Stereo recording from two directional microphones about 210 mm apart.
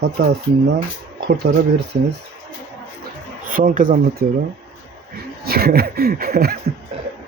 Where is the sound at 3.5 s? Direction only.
40° right (ahead or behind).